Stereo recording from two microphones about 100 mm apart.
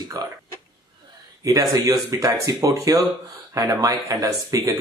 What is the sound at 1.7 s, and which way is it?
Speech, 35° right (ahead or behind).